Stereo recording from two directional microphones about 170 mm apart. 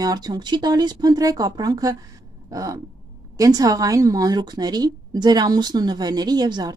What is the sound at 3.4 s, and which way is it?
A woman's voice, 20° right (ahead or behind).